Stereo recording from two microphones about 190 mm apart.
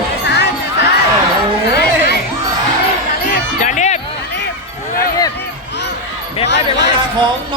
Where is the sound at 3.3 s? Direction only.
40° left (ahead or behind).